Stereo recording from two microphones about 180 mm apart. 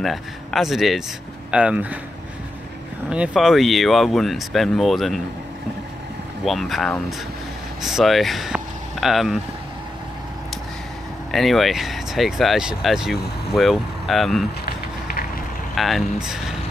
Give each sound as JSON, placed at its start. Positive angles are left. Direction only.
{"t": 0.0, "sound": "speech", "side_deg": 0}
{"t": 3.1, "sound": "speech", "side_deg": -5}
{"t": 6.4, "sound": "speech", "side_deg": 0}
{"t": 11.3, "sound": "speech", "side_deg": 0}
{"t": 14.7, "sound": "a sound", "side_deg": 55}
{"t": 15.7, "sound": "speech", "side_deg": 0}